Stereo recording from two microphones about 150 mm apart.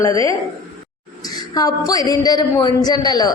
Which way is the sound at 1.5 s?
25° left (ahead or behind).